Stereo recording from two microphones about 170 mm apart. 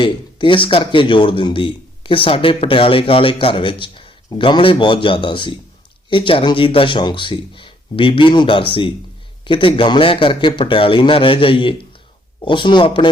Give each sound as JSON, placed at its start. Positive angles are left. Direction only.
{"t": 0.0, "sound": "a man's voice", "side_deg": 30}